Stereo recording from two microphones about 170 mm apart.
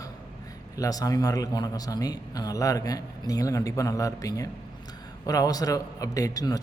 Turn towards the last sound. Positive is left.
turn(degrees=20)  # may be behind; listen again after turning